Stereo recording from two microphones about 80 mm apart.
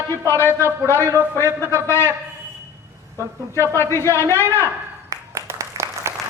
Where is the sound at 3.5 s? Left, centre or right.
Left.